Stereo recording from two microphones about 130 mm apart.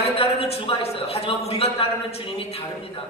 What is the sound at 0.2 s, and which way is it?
A man's voice, 50° left (ahead or behind).